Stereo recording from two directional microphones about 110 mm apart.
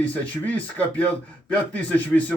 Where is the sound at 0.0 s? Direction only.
15° left (ahead or behind).